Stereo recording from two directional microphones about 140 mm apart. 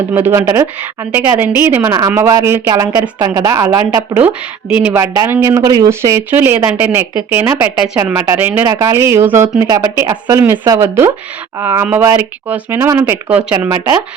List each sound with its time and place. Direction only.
0.1 s speech: 15° right (ahead or behind)
9.6 s speech: 30° right (ahead or behind)